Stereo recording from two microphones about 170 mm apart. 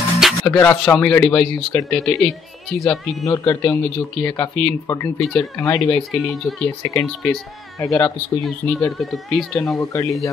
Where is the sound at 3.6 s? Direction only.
5° left (ahead or behind).